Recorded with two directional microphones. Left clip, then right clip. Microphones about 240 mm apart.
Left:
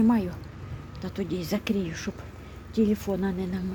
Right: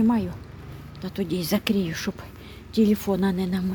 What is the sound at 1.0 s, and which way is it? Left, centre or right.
Speech, centre.